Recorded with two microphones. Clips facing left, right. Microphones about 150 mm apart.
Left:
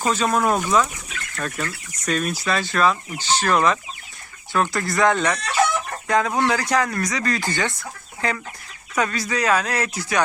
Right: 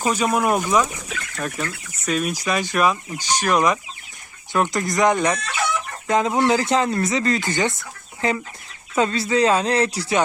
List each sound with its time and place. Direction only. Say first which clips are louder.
0.0 s speech: even; 15° right (ahead or behind); by 10.2 s 30° right (ahead or behind)